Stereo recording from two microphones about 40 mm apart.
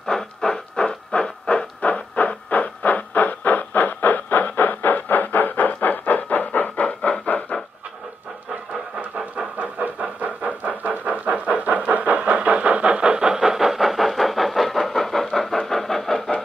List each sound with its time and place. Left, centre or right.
0.0 s owl: centre
1.8 s a sound: left
9.8 s vehicle: right
10.2 s vehicle: right
13.4 s vehicle: centre